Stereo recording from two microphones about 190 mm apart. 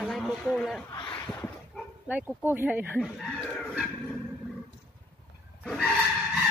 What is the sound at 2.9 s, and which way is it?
Speech, centre (ahead or behind).